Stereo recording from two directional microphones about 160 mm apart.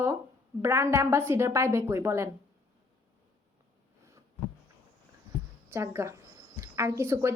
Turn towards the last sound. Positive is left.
turn(degrees=-15)  # may be behind; listen again after turning